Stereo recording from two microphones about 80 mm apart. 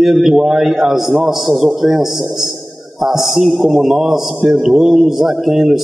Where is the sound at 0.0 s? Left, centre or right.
Centre.